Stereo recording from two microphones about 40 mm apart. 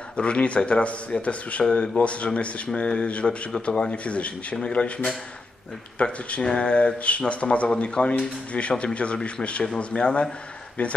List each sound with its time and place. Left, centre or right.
0.1 s speech: left